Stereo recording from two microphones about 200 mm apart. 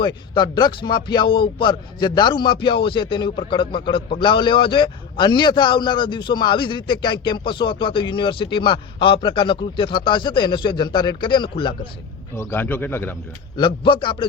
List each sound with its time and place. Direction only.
0.0 s speech: 25° left (ahead or behind)
12.4 s speech: 10° left (ahead or behind)
13.6 s speech: 25° left (ahead or behind)